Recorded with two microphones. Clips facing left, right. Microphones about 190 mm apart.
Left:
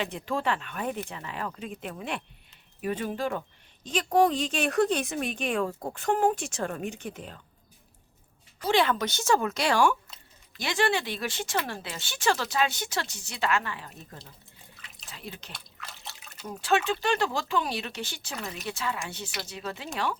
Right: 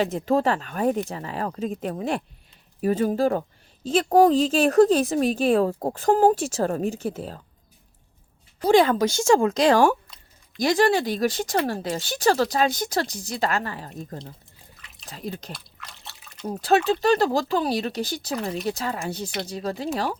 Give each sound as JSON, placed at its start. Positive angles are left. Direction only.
{"t": 0.0, "sound": "speech", "side_deg": -40}
{"t": 8.6, "sound": "speech", "side_deg": -40}
{"t": 9.6, "sound": "speech", "side_deg": -40}
{"t": 15.0, "sound": "speech", "side_deg": -40}
{"t": 15.5, "sound": "drip", "side_deg": 0}
{"t": 16.5, "sound": "speech", "side_deg": -40}